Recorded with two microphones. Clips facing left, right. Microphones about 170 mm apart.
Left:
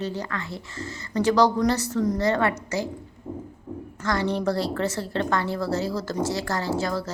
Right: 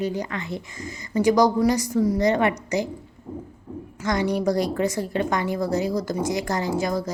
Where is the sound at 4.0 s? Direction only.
15° right (ahead or behind).